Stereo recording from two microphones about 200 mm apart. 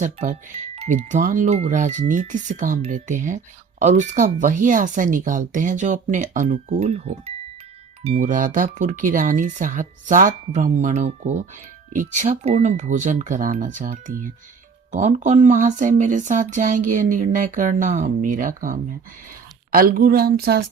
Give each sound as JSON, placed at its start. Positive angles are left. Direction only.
{"t": 0.0, "sound": "speech", "side_deg": -35}